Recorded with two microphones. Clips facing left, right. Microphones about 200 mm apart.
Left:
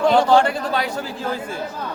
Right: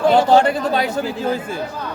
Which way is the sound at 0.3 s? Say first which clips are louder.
Right 2 dB; 20° right (ahead or behind).